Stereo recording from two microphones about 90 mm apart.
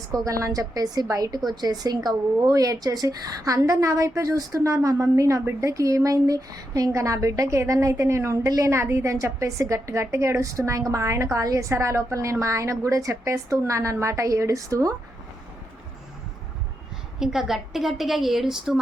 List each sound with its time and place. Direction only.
0.1 s speech: 35° right (ahead or behind)
17.2 s a woman's voice: 5° right (ahead or behind)